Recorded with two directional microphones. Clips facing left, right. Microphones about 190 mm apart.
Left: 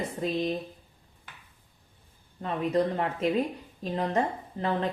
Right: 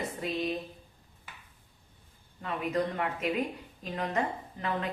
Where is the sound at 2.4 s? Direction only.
35° left (ahead or behind).